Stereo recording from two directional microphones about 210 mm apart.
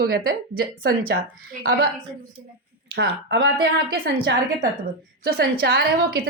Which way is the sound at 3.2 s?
50° right (ahead or behind).